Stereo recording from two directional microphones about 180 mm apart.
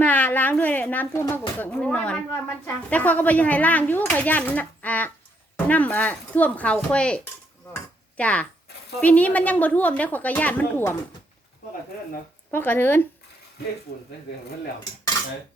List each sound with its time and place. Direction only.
0.0 s speech: 10° left (ahead or behind)
12.5 s speech: 10° left (ahead or behind)